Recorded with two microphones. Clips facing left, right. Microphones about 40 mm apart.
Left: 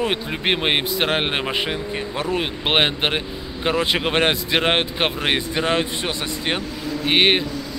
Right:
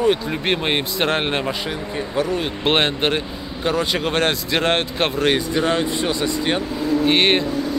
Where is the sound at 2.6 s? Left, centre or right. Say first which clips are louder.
Right 1 dB; centre.